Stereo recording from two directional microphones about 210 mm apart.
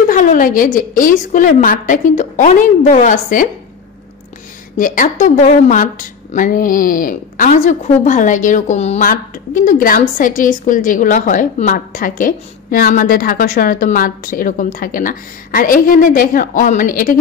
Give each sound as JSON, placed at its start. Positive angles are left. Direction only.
{"t": 0.1, "sound": "a woman's voice", "side_deg": 40}
{"t": 4.7, "sound": "a woman's voice", "side_deg": 40}